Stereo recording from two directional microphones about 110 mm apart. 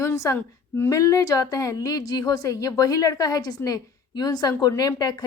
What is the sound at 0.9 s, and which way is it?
A woman's voice, 30° left (ahead or behind).